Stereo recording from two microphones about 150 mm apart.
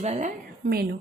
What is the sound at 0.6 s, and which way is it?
Speech, 90° right.